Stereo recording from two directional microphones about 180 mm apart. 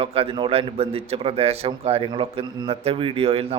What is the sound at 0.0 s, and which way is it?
A man's voice, 30° right (ahead or behind).